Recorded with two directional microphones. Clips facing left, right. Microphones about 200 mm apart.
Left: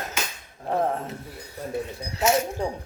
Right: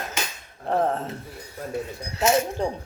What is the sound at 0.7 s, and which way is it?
Speech, 10° left (ahead or behind).